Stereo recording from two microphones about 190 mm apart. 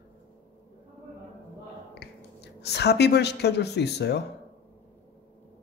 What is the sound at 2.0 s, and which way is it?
Speech, 60° left (ahead or behind).